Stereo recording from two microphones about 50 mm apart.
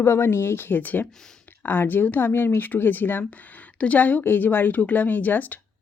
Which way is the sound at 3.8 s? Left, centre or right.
Left.